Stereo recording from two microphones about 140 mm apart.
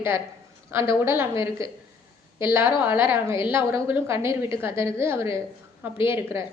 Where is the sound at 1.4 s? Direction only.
40° left (ahead or behind).